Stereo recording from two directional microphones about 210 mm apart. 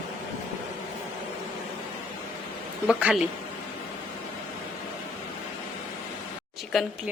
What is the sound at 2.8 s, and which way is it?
Speech, 5° right (ahead or behind).